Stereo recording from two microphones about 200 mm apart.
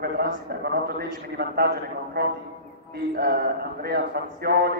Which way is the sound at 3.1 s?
50° right (ahead or behind).